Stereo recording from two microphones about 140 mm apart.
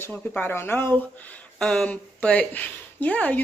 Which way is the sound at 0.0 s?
10° left (ahead or behind).